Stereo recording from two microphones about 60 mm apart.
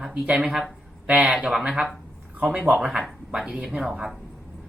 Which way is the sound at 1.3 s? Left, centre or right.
Centre.